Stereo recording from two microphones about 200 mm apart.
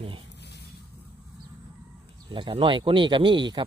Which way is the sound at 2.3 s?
25° right (ahead or behind).